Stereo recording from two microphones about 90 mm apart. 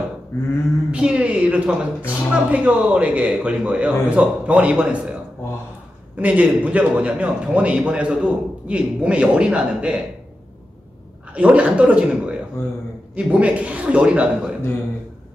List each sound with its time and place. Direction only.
0.9 s a man's voice: 10° right (ahead or behind)
6.1 s a man's voice: 15° right (ahead or behind)
11.3 s a man's voice: 15° right (ahead or behind)
12.6 s a man's voice: 30° left (ahead or behind)
13.1 s a man's voice: 15° right (ahead or behind)